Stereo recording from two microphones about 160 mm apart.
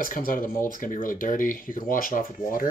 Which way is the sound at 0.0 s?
60° left (ahead or behind).